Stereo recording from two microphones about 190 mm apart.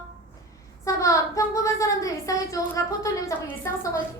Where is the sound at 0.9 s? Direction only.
15° left (ahead or behind).